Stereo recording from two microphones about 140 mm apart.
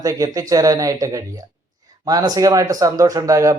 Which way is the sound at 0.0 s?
25° right (ahead or behind).